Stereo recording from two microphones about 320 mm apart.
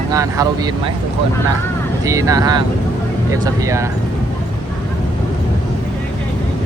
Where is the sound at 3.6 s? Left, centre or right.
Centre.